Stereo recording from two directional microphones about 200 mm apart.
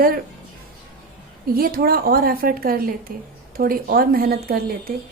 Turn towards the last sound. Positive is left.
turn(degrees=-50)  # may be behind; listen again after turning